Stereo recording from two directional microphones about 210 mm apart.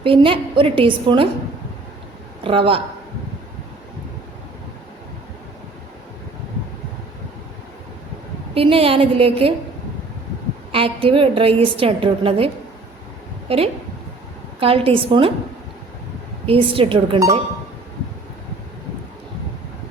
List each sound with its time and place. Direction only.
0.0 s a woman's voice: 25° right (ahead or behind)
2.4 s a woman's voice: 25° right (ahead or behind)
8.5 s a woman's voice: 25° right (ahead or behind)
10.7 s a woman's voice: 25° right (ahead or behind)
13.5 s a woman's voice: 30° right (ahead or behind)
16.5 s a woman's voice: 25° right (ahead or behind)